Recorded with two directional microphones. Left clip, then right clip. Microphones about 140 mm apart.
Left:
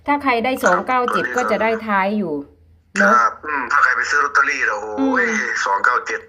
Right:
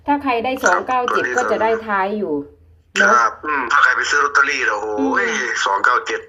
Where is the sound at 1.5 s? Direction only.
25° left (ahead or behind).